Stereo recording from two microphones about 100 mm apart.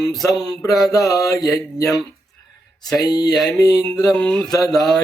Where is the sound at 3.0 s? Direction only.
40° left (ahead or behind).